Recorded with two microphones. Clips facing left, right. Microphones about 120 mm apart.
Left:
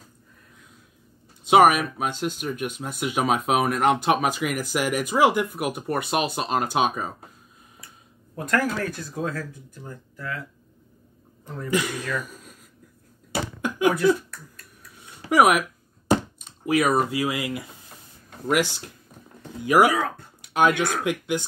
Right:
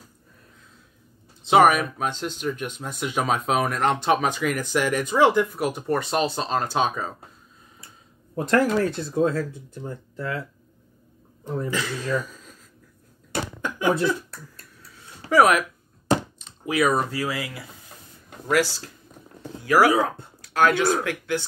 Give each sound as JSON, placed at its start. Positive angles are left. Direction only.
{"t": 1.4, "sound": "speech", "side_deg": 10}
{"t": 8.4, "sound": "speech", "side_deg": -25}
{"t": 11.4, "sound": "speech", "side_deg": -20}
{"t": 11.7, "sound": "speech", "side_deg": 15}
{"t": 13.3, "sound": "a sound", "side_deg": 10}
{"t": 13.9, "sound": "speech", "side_deg": -30}
{"t": 15.2, "sound": "speech", "side_deg": 10}
{"t": 19.9, "sound": "speech", "side_deg": -25}
{"t": 20.4, "sound": "speech", "side_deg": 20}